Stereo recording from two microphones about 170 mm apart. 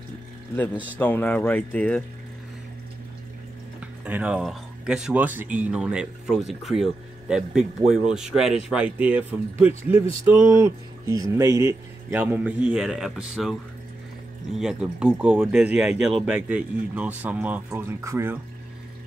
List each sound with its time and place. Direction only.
0.9 s speech: 10° left (ahead or behind)
3.8 s speech: 5° right (ahead or behind)
14.6 s speech: 5° right (ahead or behind)